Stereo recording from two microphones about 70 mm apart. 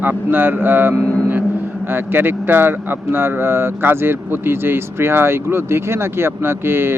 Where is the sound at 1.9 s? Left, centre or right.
Right.